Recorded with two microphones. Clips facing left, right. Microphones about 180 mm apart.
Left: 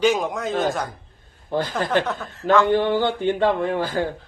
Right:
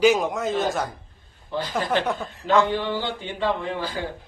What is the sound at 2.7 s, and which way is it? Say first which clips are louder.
Speech: left 7 dB; 55° left (ahead or behind).